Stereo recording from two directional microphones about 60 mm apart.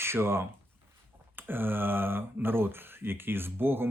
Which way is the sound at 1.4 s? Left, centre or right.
Right.